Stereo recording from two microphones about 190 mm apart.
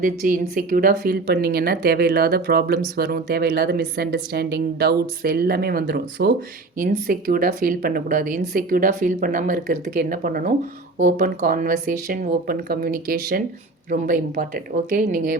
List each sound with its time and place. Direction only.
0.0 s speech: 45° right (ahead or behind)
6.7 s speech: 50° right (ahead or behind)